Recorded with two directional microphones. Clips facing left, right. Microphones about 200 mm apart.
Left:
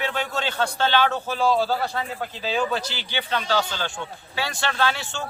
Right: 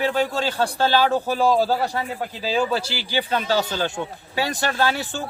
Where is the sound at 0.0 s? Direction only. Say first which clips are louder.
Right 5 dB; 35° right (ahead or behind).